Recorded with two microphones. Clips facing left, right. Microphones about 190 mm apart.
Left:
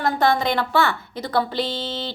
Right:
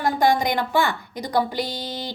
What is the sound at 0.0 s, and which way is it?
A woman's voice, 15° right (ahead or behind).